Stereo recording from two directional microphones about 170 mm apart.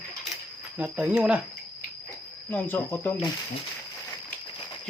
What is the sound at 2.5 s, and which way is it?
Speech, 15° left (ahead or behind).